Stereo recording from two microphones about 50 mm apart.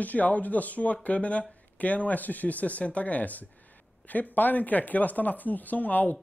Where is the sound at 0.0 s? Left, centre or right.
Left.